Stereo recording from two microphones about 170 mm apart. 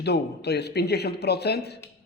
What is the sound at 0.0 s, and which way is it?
A man's voice, 75° left (ahead or behind).